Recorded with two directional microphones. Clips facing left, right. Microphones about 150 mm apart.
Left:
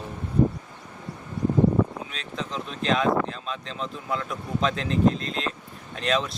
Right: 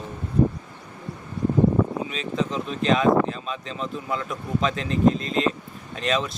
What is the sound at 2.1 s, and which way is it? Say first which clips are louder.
Speech: right 7 dB; centre (ahead or behind).